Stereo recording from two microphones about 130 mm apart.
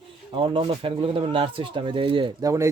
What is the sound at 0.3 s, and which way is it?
Speech, 40° right (ahead or behind).